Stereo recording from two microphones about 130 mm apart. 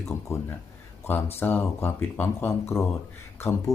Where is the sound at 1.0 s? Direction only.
15° left (ahead or behind).